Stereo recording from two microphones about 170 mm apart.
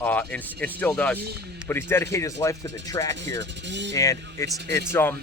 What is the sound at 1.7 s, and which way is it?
Speech, 15° left (ahead or behind).